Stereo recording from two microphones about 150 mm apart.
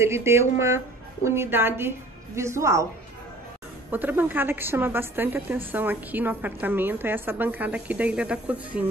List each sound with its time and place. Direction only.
0.0 s a woman's voice: 20° right (ahead or behind)
3.9 s a woman's voice: 10° right (ahead or behind)